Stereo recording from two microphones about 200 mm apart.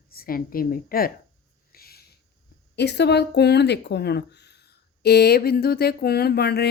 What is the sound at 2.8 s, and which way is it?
Speech, 55° left (ahead or behind).